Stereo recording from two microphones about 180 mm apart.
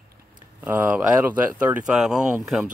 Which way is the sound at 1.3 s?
10° right (ahead or behind).